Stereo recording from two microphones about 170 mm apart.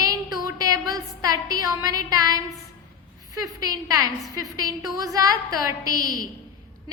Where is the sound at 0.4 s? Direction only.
20° right (ahead or behind).